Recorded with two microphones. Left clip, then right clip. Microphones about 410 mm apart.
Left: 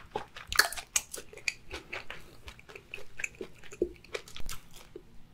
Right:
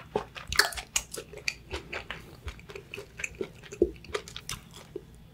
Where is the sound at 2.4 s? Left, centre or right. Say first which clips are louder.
Right 4 dB; centre.